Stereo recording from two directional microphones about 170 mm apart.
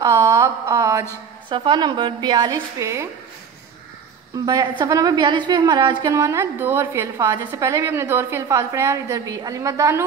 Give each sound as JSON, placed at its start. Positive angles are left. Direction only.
{"t": 0.0, "sound": "a sound", "side_deg": -20}
{"t": 1.5, "sound": "a woman's voice", "side_deg": -25}
{"t": 4.5, "sound": "a woman's voice", "side_deg": -20}